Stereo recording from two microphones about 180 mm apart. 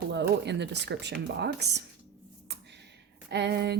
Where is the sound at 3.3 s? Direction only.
70° right (ahead or behind).